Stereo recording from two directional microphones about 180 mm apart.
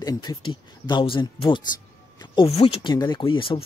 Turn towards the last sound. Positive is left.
turn(degrees=30)  # may be behind; listen again after turning